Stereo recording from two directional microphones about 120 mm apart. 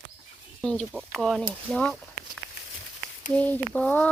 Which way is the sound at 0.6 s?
10° left (ahead or behind).